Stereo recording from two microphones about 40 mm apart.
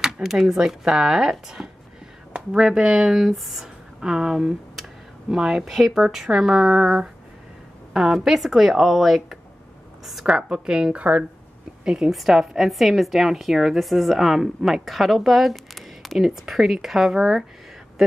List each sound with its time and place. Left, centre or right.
0.3 s speech: centre
6.1 s a woman's voice: centre
10.2 s speech: right
11.0 s speech: right
11.8 s a woman's voice: centre
12.1 s a woman's voice: centre
16.4 s speech: centre